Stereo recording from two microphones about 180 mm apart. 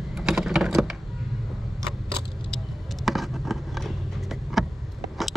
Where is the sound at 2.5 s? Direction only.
Centre (ahead or behind).